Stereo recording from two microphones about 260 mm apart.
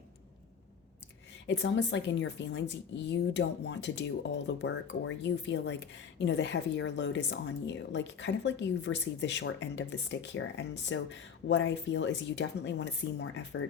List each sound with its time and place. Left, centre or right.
1.5 s speech: left